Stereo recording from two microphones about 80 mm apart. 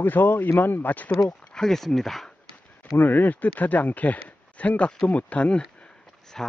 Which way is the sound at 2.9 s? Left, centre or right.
Left.